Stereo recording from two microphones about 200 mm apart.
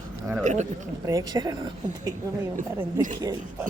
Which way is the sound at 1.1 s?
20° right (ahead or behind).